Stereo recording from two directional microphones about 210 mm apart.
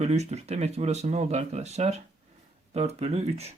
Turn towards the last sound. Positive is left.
turn(degrees=-30)  # may be behind; listen again after turning